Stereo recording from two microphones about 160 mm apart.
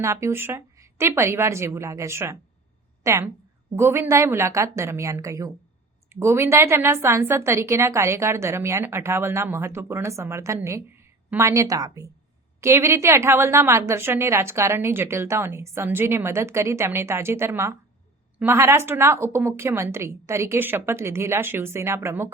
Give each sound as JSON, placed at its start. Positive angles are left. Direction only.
{"t": 0.0, "sound": "a woman's voice", "side_deg": -20}